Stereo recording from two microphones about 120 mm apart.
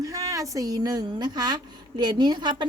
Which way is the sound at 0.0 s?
30° right (ahead or behind).